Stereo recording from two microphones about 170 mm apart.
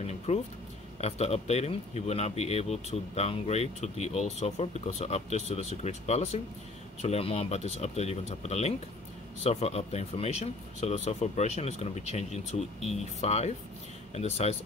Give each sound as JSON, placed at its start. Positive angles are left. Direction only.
{"t": 0.0, "sound": "speech", "side_deg": 40}